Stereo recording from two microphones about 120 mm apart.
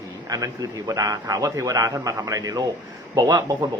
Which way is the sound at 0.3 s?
30° right (ahead or behind).